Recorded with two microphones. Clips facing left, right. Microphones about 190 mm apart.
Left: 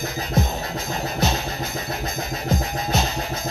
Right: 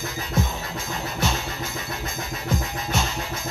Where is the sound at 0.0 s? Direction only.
40° left (ahead or behind).